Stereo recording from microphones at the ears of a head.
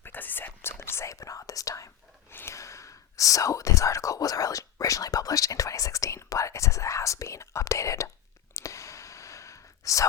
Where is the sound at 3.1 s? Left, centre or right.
Left.